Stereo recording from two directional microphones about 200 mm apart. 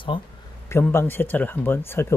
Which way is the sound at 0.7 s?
15° left (ahead or behind).